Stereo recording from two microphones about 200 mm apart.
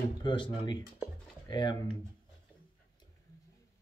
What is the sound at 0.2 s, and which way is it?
Speech, 25° left (ahead or behind).